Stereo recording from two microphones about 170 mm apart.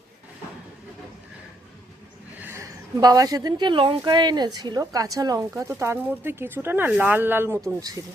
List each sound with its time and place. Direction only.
2.4 s a woman's voice: 15° right (ahead or behind)